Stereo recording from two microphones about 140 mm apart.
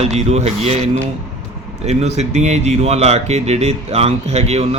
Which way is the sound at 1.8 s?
50° right (ahead or behind).